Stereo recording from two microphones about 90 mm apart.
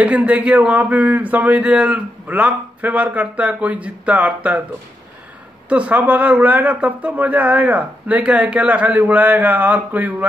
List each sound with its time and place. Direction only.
0.0 s speech: 15° right (ahead or behind)
5.7 s speech: 15° right (ahead or behind)